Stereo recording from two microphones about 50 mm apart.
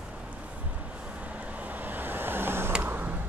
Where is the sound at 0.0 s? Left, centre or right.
Right.